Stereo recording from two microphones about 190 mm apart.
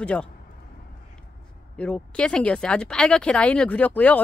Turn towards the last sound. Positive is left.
turn(degrees=10)  # may be behind; listen again after turning